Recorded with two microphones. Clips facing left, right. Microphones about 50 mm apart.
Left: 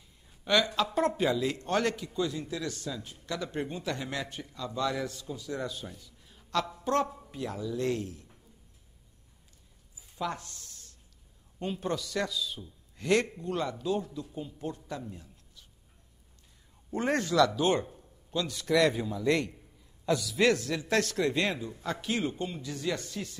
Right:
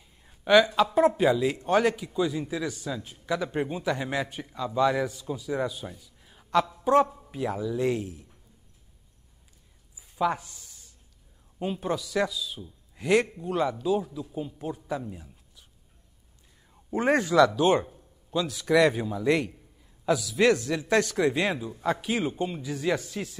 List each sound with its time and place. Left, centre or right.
0.5 s speech: centre
6.2 s a sound: centre
6.8 s speech: centre
10.1 s a man's voice: centre
17.0 s a man's voice: centre
17.5 s a man's voice: centre